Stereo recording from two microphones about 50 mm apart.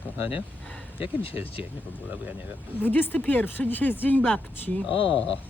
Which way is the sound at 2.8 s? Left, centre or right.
Left.